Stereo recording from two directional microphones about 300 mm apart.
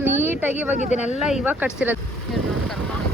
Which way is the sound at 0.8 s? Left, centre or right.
Left.